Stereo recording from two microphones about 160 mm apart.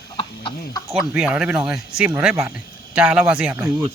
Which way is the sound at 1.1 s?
5° right (ahead or behind).